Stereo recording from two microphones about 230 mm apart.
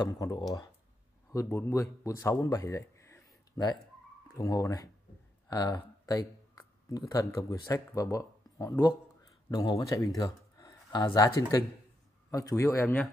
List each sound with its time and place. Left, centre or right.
0.0 s speech: centre